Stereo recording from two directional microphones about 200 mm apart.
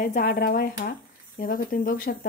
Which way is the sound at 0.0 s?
40° left (ahead or behind).